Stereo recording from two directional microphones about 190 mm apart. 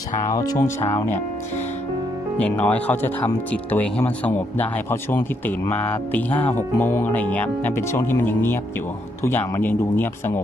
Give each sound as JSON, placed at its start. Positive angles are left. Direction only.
{"t": 0.3, "sound": "speech", "side_deg": 20}
{"t": 2.3, "sound": "speech", "side_deg": 5}
{"t": 5.7, "sound": "speech", "side_deg": 10}